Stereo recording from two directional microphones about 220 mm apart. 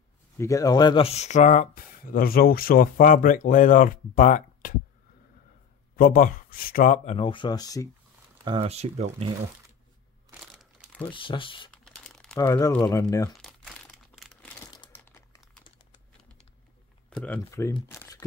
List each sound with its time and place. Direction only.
0.4 s speech: 15° left (ahead or behind); by 4.7 s 35° left (ahead or behind)
5.9 s speech: 40° left (ahead or behind); by 7.9 s 15° left (ahead or behind)
8.5 s speech: 25° right (ahead or behind)
10.3 s crumpling: centre (ahead or behind)
11.1 s speech: 25° left (ahead or behind)
11.7 s crumpling: 5° left (ahead or behind)
12.4 s speech: 15° left (ahead or behind)
13.4 s crumpling: 5° left (ahead or behind)
14.7 s crumpling: 15° left (ahead or behind)
17.1 s speech: 5° left (ahead or behind)